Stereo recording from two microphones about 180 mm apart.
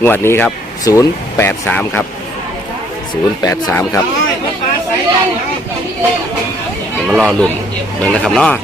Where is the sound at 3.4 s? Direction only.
20° left (ahead or behind).